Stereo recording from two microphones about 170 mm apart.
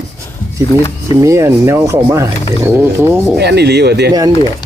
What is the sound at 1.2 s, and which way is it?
Speech, 15° right (ahead or behind).